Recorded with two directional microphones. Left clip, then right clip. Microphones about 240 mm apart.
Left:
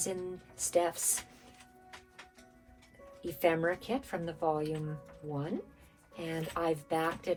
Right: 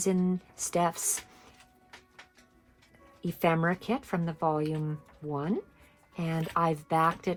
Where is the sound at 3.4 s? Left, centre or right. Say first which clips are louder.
Right 2 dB; right.